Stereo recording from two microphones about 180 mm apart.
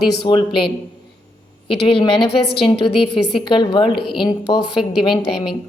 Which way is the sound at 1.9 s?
30° left (ahead or behind).